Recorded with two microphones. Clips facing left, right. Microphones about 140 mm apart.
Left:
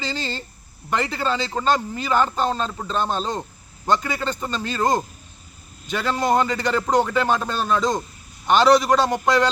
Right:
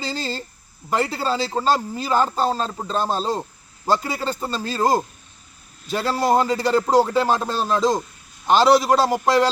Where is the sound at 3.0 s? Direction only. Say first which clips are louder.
Right 1 dB; 35° right (ahead or behind).